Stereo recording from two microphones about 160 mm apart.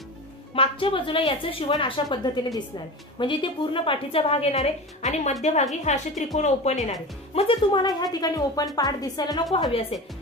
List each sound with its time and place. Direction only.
0.6 s a woman's voice: 35° left (ahead or behind)
7.3 s speech: 30° left (ahead or behind)